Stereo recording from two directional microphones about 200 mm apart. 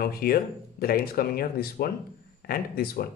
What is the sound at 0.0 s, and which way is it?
Speech, 50° left (ahead or behind).